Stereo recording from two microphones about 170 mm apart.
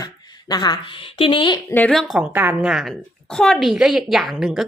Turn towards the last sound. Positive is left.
turn(degrees=0)  # may be behind; listen again after turning